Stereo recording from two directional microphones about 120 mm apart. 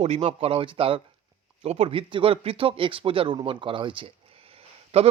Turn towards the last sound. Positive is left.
turn(degrees=-60)  # may be behind; listen again after turning